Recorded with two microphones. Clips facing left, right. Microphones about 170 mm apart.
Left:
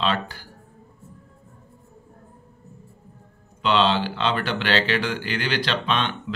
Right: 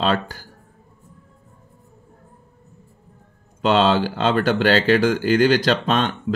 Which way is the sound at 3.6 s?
45° right (ahead or behind).